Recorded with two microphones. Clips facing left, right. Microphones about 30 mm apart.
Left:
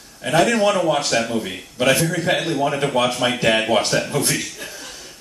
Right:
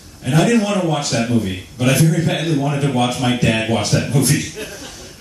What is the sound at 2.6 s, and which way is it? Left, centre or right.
A man's voice, centre.